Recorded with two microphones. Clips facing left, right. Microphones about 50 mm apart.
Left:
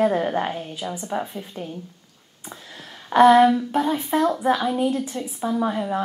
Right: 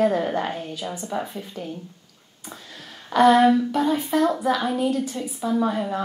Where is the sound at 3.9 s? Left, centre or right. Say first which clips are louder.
Even; left.